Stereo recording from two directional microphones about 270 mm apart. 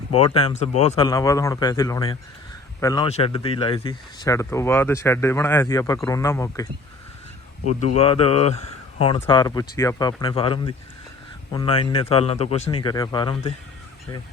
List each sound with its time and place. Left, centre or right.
0.1 s speech: left
7.6 s speech: left